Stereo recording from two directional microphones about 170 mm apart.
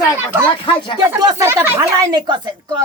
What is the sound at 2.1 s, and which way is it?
Speech, 25° right (ahead or behind).